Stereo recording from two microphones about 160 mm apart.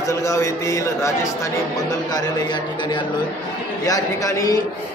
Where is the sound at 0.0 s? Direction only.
20° left (ahead or behind).